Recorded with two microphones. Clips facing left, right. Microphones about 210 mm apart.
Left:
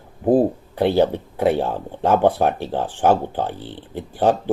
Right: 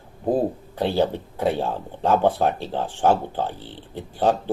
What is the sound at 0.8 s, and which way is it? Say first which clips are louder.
Speech: left 5 dB; 15° left (ahead or behind).